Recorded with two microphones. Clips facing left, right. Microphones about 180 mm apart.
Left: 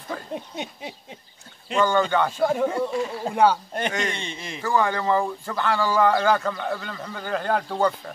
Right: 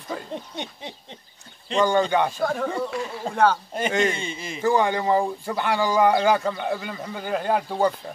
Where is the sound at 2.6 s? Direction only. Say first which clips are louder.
Left 3 dB; 5° left (ahead or behind).